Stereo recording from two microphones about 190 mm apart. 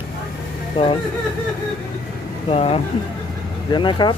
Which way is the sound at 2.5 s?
30° left (ahead or behind).